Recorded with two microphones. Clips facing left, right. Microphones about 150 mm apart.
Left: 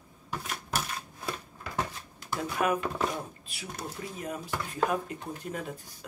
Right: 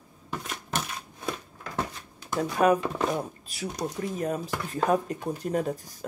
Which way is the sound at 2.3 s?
40° right (ahead or behind).